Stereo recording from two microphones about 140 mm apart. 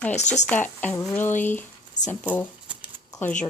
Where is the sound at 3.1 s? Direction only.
15° left (ahead or behind).